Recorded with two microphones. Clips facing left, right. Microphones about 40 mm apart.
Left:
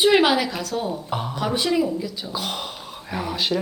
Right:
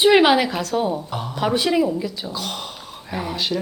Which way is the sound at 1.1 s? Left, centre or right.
Centre.